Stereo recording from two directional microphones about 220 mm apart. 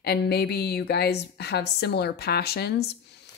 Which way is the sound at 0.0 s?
45° left (ahead or behind).